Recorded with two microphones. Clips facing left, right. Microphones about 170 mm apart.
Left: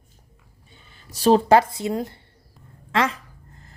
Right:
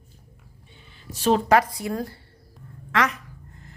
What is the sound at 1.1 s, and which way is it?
A woman's voice, 35° left (ahead or behind).